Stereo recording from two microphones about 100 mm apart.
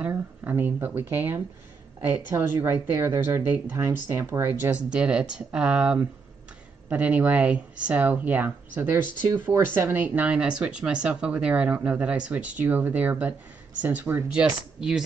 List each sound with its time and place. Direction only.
0.0 s speech: 20° right (ahead or behind)
14.3 s speech: 5° right (ahead or behind)